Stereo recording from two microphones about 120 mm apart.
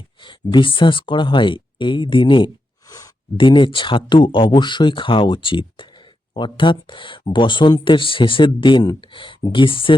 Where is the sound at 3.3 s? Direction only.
45° left (ahead or behind).